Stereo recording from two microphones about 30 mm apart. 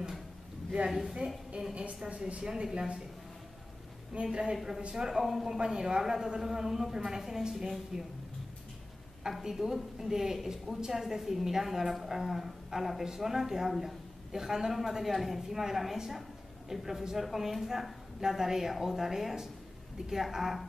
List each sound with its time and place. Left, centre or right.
0.8 s a woman's voice: centre
1.5 s a woman's voice: right
2.4 s speech: right
4.1 s a woman's voice: right
4.9 s a woman's voice: centre
9.4 s a woman's voice: centre
16.1 s a sound: centre
17.2 s a woman's voice: centre